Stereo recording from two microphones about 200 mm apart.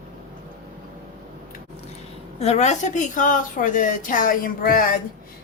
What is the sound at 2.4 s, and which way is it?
A woman's voice, 35° left (ahead or behind).